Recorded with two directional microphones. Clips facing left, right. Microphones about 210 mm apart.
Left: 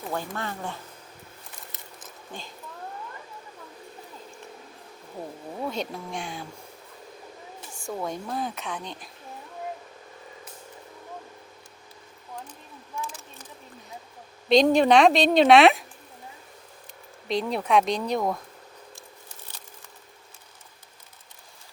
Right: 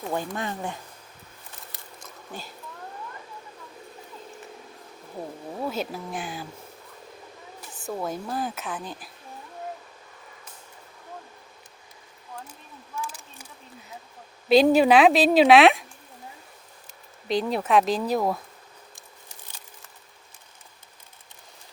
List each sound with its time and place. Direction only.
0.3 s speech: 15° right (ahead or behind)
2.3 s speech: 5° right (ahead or behind)
5.5 s a woman's voice: 5° right (ahead or behind)
7.9 s a woman's voice: 5° right (ahead or behind)
13.1 s a sound: 10° right (ahead or behind)
14.5 s a woman's voice: 5° right (ahead or behind)
17.2 s a woman's voice: centre (ahead or behind)